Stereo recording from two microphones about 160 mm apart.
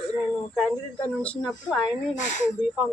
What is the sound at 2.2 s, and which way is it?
Speech, 50° left (ahead or behind).